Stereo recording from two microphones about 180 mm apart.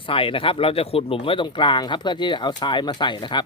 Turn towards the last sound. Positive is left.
turn(degrees=25)  # may be behind; listen again after turning